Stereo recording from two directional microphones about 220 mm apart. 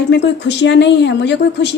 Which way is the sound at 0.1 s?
50° left (ahead or behind).